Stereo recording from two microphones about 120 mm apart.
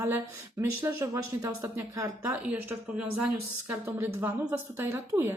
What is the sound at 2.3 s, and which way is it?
A woman's voice, 15° right (ahead or behind).